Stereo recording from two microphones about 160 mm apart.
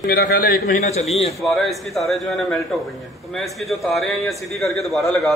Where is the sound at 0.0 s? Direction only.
80° left.